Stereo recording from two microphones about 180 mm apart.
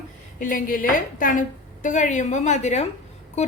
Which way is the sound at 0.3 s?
50° left (ahead or behind).